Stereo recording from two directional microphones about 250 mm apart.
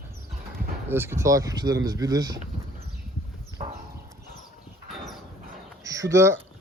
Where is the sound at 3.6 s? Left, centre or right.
Right.